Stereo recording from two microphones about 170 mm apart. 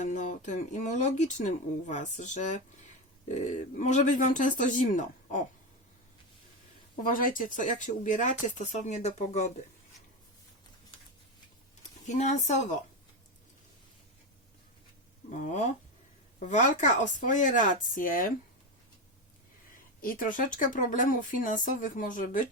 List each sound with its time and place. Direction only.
0.0 s speech: 45° left (ahead or behind)
7.0 s speech: 55° left (ahead or behind)
11.8 s speech: 45° left (ahead or behind)
15.3 s speech: 45° left (ahead or behind)
20.0 s speech: 55° left (ahead or behind)